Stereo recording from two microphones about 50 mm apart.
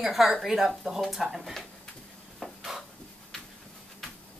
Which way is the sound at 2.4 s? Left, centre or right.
Centre.